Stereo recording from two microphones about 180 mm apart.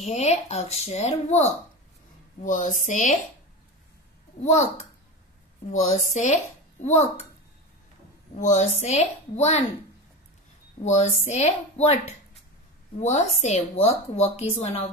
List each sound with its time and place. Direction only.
0.0 s a woman's voice: 35° left (ahead or behind)
2.4 s a sound: 45° left (ahead or behind)
4.4 s a woman's voice: 40° left (ahead or behind)
5.7 s a woman's voice: 40° left (ahead or behind)
8.4 s a woman's voice: 40° left (ahead or behind)
10.8 s a woman's voice: 40° left (ahead or behind)
13.0 s a woman's voice: 40° left (ahead or behind)